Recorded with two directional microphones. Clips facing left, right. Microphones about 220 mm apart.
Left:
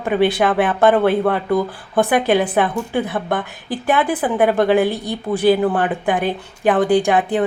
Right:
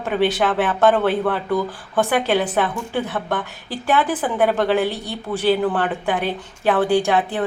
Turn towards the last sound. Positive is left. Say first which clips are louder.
# left 3 dB
turn(degrees=15)  # may be behind; listen again after turning